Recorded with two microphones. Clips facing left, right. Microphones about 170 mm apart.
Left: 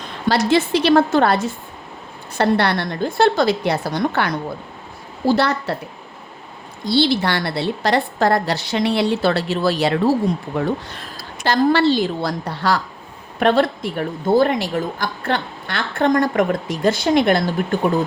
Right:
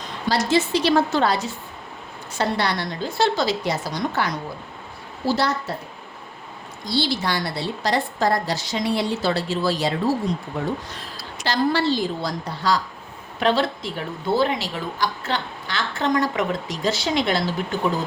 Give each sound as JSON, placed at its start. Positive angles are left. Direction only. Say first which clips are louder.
{"t": 0.3, "sound": "a woman's voice", "louder": "left 4 dB", "side_deg": 60}
{"t": 6.8, "sound": "a woman's voice", "louder": "left 6 dB", "side_deg": 65}
{"t": 11.2, "sound": "a woman's voice", "louder": "left 5 dB", "side_deg": 50}